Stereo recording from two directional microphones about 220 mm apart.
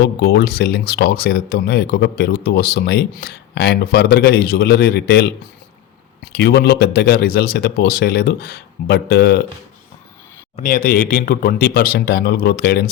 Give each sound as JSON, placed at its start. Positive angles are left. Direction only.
{"t": 0.0, "sound": "speech", "side_deg": 45}
{"t": 6.3, "sound": "speech", "side_deg": 45}
{"t": 10.6, "sound": "speech", "side_deg": 40}